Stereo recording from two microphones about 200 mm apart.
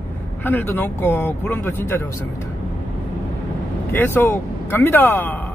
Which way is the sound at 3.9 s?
10° left (ahead or behind).